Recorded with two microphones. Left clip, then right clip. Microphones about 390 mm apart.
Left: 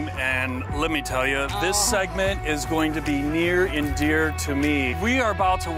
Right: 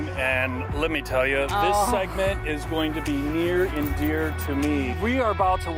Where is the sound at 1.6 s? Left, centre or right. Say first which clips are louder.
Left 1 dB; left.